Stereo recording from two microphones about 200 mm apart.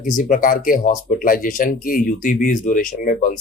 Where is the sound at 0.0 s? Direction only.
40° left (ahead or behind).